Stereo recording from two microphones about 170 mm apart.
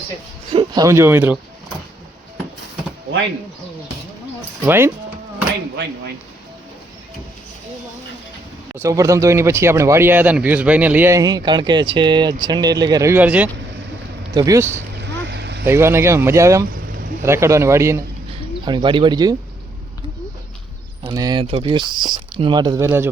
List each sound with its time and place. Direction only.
0.5 s speech: 25° right (ahead or behind)
4.6 s speech: 15° right (ahead or behind)
8.7 s speech: 15° right (ahead or behind)
14.3 s speech: 20° right (ahead or behind)
14.9 s vehicle: 85° right
15.6 s speech: 15° right (ahead or behind)
21.1 s speech: 20° right (ahead or behind)